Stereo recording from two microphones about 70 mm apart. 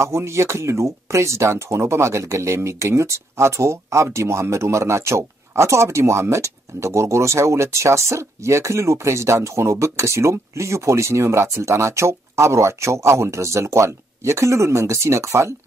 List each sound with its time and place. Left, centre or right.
0.0 s speech: right